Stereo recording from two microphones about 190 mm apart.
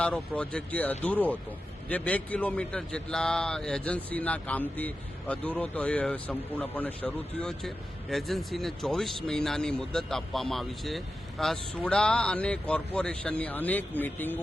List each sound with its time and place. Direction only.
0.0 s a man's voice: 5° left (ahead or behind)